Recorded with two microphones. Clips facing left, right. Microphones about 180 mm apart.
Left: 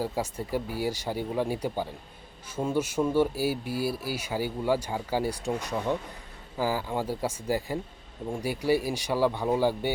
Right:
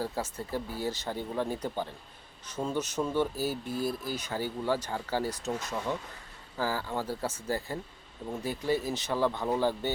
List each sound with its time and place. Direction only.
0.0 s speech: 15° left (ahead or behind)